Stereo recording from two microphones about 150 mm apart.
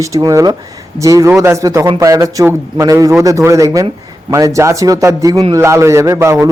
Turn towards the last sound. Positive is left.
turn(degrees=-20)  # may be behind; listen again after turning